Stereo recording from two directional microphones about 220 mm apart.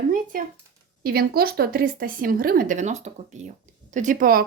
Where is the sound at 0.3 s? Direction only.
40° right (ahead or behind).